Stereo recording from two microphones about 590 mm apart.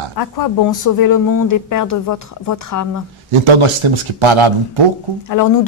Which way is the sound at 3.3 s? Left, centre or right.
Right.